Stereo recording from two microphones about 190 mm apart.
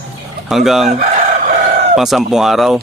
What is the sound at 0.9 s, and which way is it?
Chicken, 35° right (ahead or behind).